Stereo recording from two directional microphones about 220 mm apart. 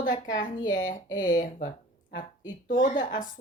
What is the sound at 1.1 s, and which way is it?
Speech, 20° left (ahead or behind).